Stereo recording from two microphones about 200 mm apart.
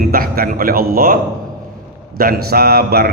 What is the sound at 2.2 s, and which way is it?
Speech, 50° right (ahead or behind).